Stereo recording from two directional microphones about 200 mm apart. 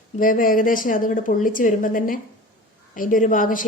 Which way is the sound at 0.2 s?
45° left (ahead or behind).